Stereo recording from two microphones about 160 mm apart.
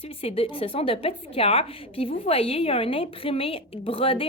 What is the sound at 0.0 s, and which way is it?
A woman's voice, 40° left (ahead or behind).